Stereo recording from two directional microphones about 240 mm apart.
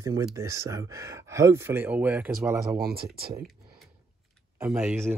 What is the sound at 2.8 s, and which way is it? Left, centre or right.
Speech, right.